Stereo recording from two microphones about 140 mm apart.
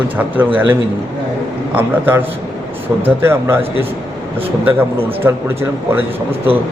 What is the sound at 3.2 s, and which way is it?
Speech, 15° right (ahead or behind).